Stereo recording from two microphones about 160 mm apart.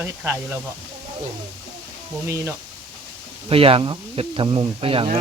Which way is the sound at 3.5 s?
35° right (ahead or behind).